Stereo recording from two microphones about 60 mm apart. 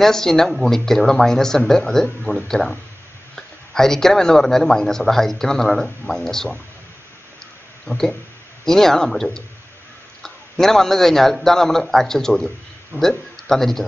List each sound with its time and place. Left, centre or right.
0.0 s speech: centre
7.8 s a man's voice: centre